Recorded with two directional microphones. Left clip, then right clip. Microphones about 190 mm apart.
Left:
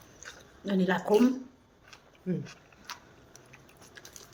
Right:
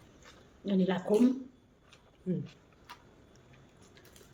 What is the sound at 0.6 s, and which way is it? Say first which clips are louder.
Speech: left 3 dB; 5° right (ahead or behind).